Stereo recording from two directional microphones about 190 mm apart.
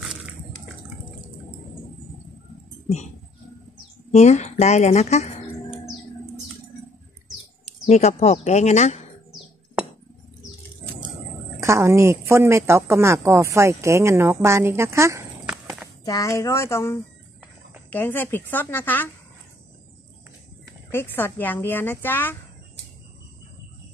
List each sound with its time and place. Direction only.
4.1 s speech: 35° left (ahead or behind)
7.8 s speech: 35° left (ahead or behind)
11.6 s speech: 15° right (ahead or behind)
15.4 s walk: 5° right (ahead or behind)
16.1 s speech: 15° left (ahead or behind)
20.9 s speech: 10° left (ahead or behind)